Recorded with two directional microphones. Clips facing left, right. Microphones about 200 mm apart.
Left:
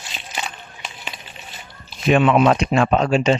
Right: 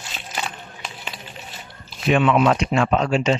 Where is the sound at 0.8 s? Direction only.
Centre (ahead or behind).